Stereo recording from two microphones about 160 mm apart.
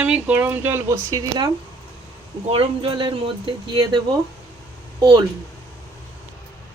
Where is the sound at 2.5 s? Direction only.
35° right (ahead or behind).